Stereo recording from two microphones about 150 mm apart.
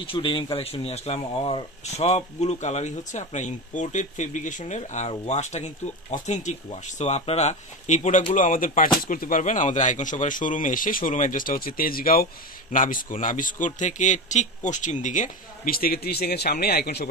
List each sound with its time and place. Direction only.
0.0 s speech: 35° left (ahead or behind); by 12.3 s 75° left (ahead or behind)
12.7 s speech: 65° left (ahead or behind); by 17.1 s 90° left